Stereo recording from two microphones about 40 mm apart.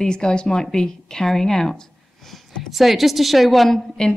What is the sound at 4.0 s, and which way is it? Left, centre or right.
Speech, left.